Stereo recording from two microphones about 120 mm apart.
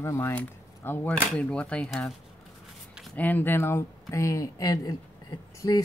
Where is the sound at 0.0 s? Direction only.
20° left (ahead or behind); by 2.1 s 5° left (ahead or behind).